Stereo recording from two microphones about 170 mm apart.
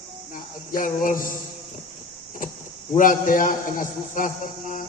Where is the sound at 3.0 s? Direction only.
50° left (ahead or behind).